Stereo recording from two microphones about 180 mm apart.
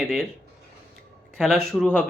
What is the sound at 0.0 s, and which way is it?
Speech, 5° left (ahead or behind).